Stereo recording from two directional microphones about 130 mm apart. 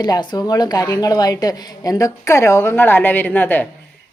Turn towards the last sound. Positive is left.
turn(degrees=15)  # may be behind; listen again after turning